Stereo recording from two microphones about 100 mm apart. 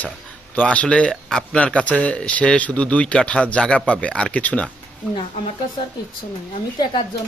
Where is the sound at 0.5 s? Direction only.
15° left (ahead or behind).